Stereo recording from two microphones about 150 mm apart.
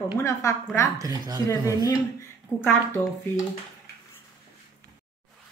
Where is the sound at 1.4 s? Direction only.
20° left (ahead or behind).